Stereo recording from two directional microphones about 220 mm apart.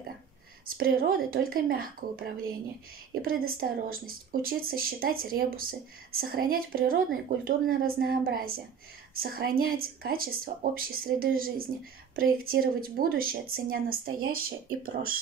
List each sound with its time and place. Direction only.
0.7 s speech: 40° right (ahead or behind)
3.5 s speech: 40° right (ahead or behind)